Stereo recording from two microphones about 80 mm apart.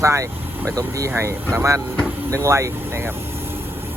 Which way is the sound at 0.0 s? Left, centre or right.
Right.